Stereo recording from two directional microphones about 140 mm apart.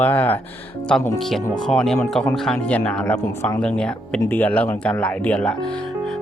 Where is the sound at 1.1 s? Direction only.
Centre (ahead or behind).